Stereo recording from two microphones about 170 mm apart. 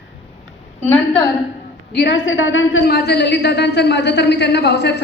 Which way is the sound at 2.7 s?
75° left (ahead or behind).